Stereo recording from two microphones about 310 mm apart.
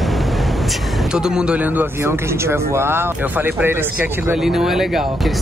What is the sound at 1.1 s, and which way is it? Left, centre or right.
Speech, centre.